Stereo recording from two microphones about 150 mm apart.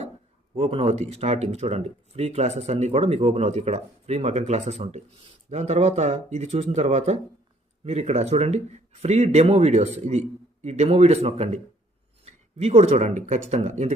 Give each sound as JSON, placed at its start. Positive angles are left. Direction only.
{"t": 0.5, "sound": "speech", "side_deg": -40}